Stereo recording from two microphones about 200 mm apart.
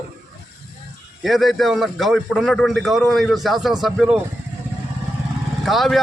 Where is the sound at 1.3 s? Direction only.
Centre (ahead or behind).